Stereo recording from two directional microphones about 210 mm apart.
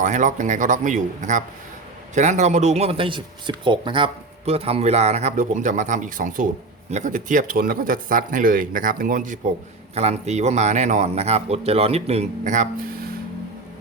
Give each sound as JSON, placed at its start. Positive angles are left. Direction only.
{"t": 0.0, "sound": "speech", "side_deg": -35}